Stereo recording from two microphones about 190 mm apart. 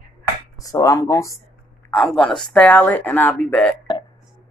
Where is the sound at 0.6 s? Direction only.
20° left (ahead or behind).